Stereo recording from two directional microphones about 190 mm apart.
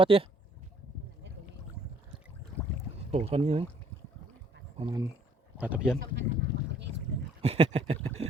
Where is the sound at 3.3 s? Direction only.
30° right (ahead or behind).